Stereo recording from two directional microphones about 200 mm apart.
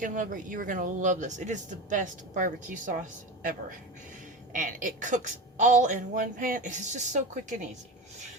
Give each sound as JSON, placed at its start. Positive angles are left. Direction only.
{"t": 0.0, "sound": "speech", "side_deg": -40}
{"t": 4.5, "sound": "speech", "side_deg": -40}